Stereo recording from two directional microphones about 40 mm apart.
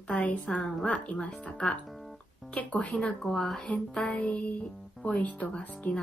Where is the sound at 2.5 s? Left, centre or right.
Left.